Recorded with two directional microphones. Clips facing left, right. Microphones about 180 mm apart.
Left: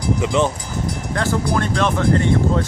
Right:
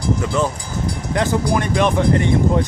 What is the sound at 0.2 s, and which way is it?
Speech, 20° left (ahead or behind).